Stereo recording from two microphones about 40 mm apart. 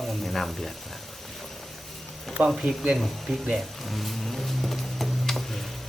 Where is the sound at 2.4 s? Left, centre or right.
Right.